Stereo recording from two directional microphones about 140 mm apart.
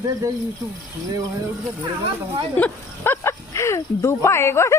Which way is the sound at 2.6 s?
15° left (ahead or behind).